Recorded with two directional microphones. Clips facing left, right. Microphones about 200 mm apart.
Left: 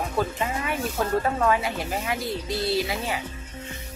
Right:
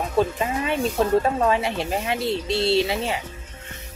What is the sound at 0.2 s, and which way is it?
Speech, 25° right (ahead or behind).